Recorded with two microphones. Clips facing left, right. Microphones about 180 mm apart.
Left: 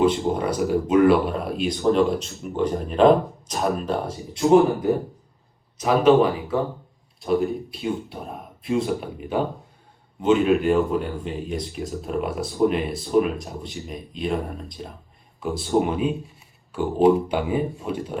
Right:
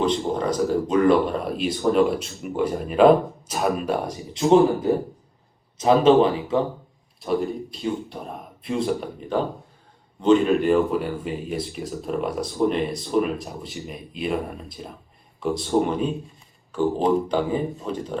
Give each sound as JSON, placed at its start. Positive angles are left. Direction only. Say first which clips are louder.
{"t": 0.0, "sound": "speech", "louder": "left 2 dB", "side_deg": 10}
{"t": 5.7, "sound": "speech", "louder": "right 1 dB", "side_deg": -25}
{"t": 7.2, "sound": "speech", "louder": "left 2 dB", "side_deg": 0}
{"t": 10.2, "sound": "speech", "louder": "right 1 dB", "side_deg": 5}